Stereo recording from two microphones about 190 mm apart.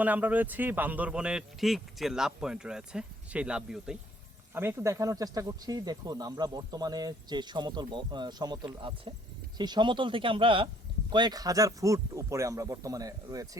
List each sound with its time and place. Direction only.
0.0 s speech: 10° right (ahead or behind)